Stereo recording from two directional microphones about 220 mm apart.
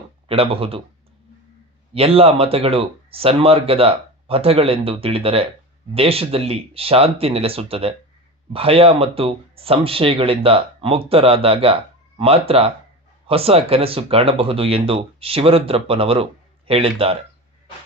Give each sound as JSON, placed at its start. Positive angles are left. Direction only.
{"t": 0.3, "sound": "speech", "side_deg": -25}
{"t": 1.9, "sound": "speech", "side_deg": -25}